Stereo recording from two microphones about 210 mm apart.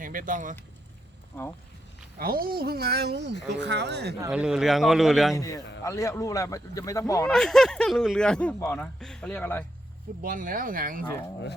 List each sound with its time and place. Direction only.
0.0 s speech: 40° right (ahead or behind)
2.1 s speech: 45° right (ahead or behind)
4.2 s speech: 5° right (ahead or behind)
5.4 s speech: 15° left (ahead or behind)
7.3 s speech: centre (ahead or behind)
10.2 s speech: 40° right (ahead or behind)